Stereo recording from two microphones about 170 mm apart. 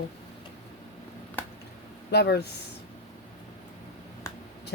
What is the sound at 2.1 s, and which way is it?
Speech, 75° left (ahead or behind).